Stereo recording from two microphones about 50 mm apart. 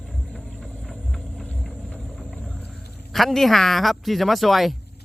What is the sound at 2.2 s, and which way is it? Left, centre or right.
Wild animals, centre.